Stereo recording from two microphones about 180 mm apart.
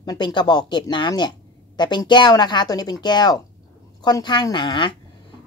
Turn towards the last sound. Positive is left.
turn(degrees=25)  # may be behind; listen again after turning